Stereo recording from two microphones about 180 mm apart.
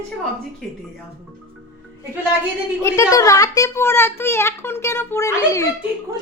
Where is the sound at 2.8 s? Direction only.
15° left (ahead or behind).